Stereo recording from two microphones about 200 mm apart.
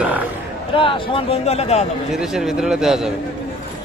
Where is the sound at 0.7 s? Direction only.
25° left (ahead or behind).